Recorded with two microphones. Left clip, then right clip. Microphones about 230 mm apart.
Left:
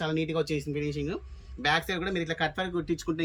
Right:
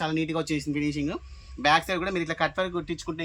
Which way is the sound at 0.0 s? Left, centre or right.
Centre.